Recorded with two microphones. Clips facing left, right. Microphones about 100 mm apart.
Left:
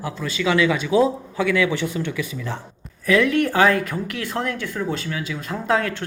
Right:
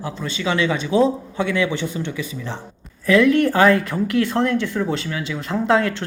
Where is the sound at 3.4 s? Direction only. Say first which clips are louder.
Right 2 dB; 15° left (ahead or behind).